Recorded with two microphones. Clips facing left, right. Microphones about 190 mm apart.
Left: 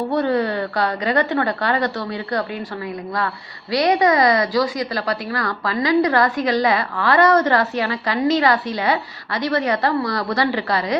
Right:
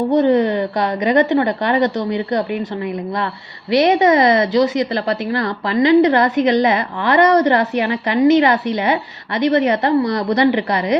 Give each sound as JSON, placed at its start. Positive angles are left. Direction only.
{"t": 0.1, "sound": "a woman's voice", "side_deg": -20}
{"t": 3.7, "sound": "a woman's voice", "side_deg": -25}